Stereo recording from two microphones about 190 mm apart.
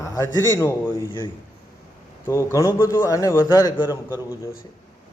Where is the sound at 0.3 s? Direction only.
15° left (ahead or behind).